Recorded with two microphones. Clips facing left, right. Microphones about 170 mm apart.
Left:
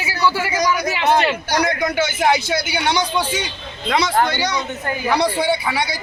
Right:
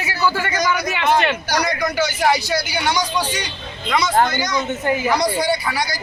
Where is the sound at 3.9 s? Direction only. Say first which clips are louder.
Right 1 dB; 30° left (ahead or behind).